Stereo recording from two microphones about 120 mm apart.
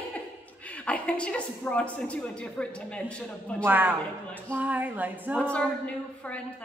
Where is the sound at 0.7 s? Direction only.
10° left (ahead or behind).